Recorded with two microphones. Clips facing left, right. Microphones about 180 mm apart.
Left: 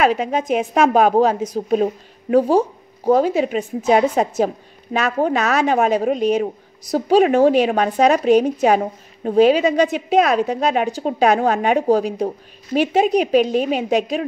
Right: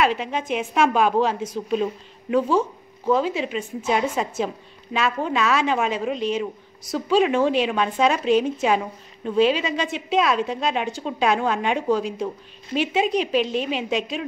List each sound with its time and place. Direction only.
0.0 s a woman's voice: 45° left (ahead or behind)